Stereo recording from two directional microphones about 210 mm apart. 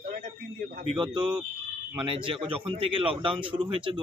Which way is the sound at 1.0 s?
20° right (ahead or behind).